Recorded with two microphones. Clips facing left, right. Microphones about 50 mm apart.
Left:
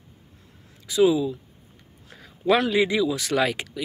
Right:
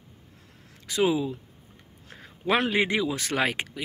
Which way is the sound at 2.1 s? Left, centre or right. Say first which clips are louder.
Left 4 dB; right.